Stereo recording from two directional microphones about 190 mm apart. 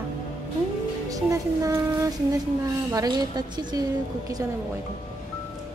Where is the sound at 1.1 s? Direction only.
20° right (ahead or behind).